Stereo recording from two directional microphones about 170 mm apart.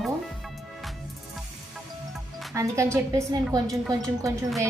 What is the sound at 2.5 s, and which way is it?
A woman's voice, 15° right (ahead or behind).